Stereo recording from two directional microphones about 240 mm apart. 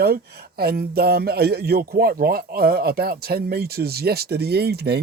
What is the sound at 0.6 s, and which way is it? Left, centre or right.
A man's voice, right.